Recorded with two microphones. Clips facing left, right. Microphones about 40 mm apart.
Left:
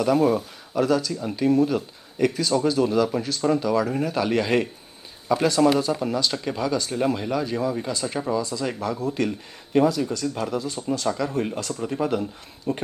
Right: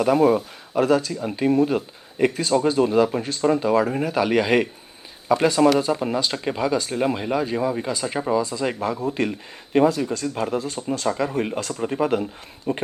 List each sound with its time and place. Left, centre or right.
0.0 s a man's voice: centre
0.8 s speech: right